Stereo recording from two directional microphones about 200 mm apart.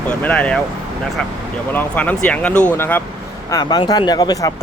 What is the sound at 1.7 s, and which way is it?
Speech, 10° left (ahead or behind).